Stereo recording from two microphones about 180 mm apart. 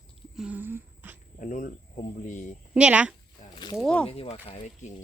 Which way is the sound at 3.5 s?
25° left (ahead or behind).